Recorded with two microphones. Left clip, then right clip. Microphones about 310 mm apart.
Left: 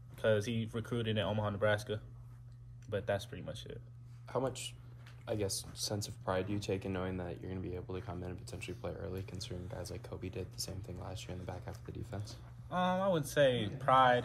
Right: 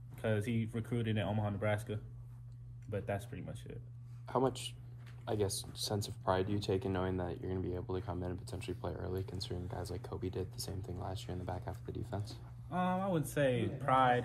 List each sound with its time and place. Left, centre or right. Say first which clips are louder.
0.2 s speech: left 5 dB; centre
4.3 s speech: right 3 dB; centre
12.6 s speech: left 3 dB; centre